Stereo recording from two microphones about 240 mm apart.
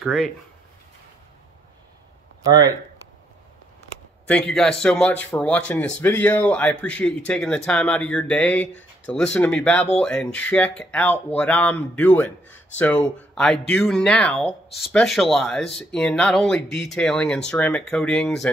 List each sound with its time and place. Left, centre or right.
0.0 s speech: centre
2.4 s speech: centre
4.3 s speech: centre